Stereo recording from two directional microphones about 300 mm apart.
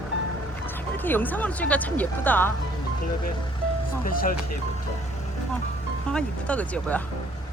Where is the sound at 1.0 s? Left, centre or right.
Centre.